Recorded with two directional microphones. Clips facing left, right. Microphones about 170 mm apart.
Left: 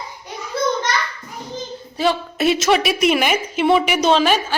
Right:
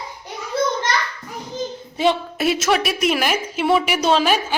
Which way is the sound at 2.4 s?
5° right (ahead or behind).